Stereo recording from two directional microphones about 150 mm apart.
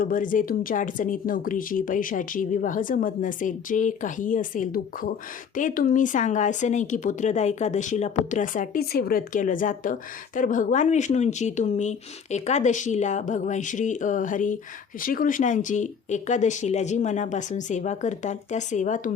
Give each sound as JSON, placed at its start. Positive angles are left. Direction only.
{"t": 0.0, "sound": "speech", "side_deg": 65}